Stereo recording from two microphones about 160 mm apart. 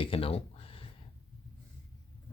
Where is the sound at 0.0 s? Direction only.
35° left (ahead or behind).